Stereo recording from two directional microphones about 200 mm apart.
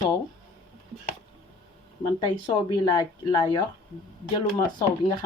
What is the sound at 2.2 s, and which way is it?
Speech, 25° left (ahead or behind).